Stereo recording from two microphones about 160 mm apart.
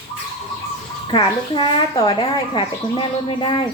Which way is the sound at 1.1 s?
30° left (ahead or behind).